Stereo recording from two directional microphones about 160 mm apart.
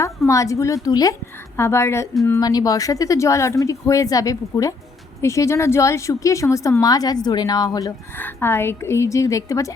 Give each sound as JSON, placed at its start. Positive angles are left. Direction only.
{"t": 0.3, "sound": "a woman's voice", "side_deg": 20}